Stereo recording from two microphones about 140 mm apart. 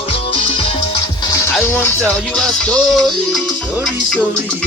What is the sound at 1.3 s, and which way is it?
Music, 25° left (ahead or behind).